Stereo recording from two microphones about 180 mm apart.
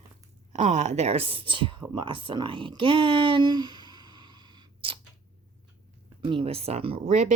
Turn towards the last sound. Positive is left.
turn(degrees=-40)  # may be behind; listen again after turning